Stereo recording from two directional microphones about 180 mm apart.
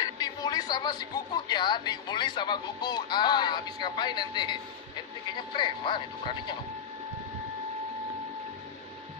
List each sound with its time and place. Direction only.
0.0 s speech: 20° left (ahead or behind)